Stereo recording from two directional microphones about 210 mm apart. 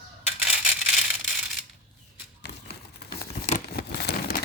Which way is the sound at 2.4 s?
50° left (ahead or behind).